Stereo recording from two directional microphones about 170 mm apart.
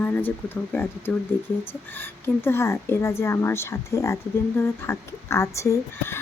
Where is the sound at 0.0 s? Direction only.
10° left (ahead or behind).